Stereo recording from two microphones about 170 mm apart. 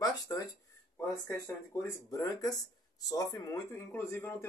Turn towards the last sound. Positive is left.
turn(degrees=15)  # may be behind; listen again after turning